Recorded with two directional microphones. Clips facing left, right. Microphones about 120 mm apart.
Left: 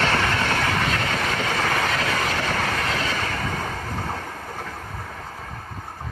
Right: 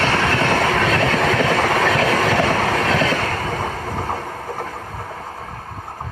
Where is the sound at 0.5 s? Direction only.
70° right (ahead or behind); by 3.2 s 85° right.